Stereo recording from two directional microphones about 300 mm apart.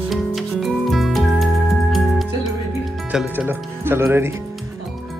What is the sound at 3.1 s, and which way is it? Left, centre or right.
Speech, centre.